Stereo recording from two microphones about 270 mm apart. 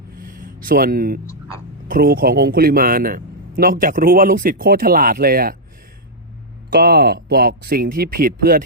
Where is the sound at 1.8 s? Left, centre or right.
Right.